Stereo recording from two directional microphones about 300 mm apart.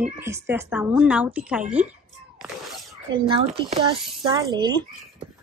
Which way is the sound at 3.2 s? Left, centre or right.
Centre.